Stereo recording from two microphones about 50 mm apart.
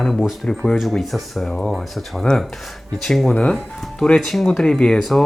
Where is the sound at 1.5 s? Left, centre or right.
Centre.